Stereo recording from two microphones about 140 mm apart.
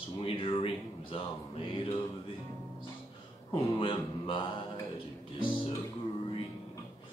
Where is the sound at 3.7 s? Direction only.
40° left (ahead or behind).